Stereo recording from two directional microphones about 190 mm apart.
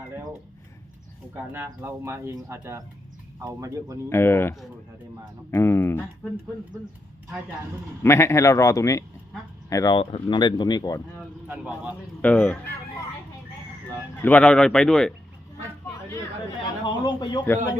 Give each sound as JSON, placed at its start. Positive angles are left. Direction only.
{"t": 1.5, "sound": "speech", "side_deg": -10}
{"t": 4.1, "sound": "a man's voice", "side_deg": 10}
{"t": 8.0, "sound": "a man's voice", "side_deg": 15}
{"t": 11.4, "sound": "speech", "side_deg": -10}
{"t": 12.2, "sound": "a man's voice", "side_deg": 5}
{"t": 14.2, "sound": "speech", "side_deg": 10}
{"t": 16.8, "sound": "speech", "side_deg": 20}